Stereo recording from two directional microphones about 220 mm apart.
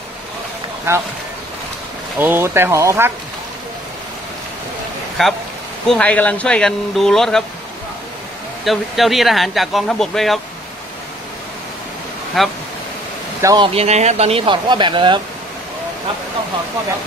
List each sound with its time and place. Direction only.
0.9 s speech: 10° right (ahead or behind)
2.1 s speech: 10° right (ahead or behind)
5.2 s speech: centre (ahead or behind)
8.6 s speech: centre (ahead or behind)
12.4 s speech: centre (ahead or behind)
13.4 s speech: 15° right (ahead or behind)
13.7 s speech: 30° right (ahead or behind)